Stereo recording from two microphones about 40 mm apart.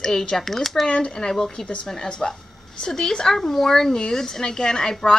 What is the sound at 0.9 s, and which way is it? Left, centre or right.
A woman's voice, left.